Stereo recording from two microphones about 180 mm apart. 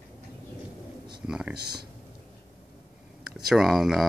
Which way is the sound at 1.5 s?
25° right (ahead or behind).